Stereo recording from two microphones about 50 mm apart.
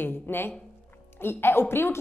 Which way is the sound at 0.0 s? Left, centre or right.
Left.